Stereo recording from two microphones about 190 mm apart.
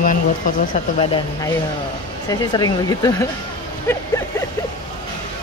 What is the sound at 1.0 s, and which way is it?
Speech, 25° left (ahead or behind).